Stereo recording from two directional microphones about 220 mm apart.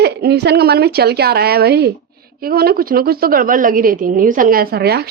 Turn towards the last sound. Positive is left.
turn(degrees=-45)  # may be behind; listen again after turning